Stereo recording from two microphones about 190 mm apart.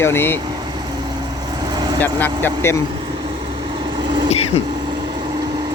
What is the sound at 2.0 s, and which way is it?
Speech, 10° left (ahead or behind).